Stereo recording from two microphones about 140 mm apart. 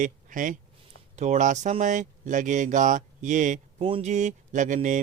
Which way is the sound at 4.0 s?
60° right (ahead or behind).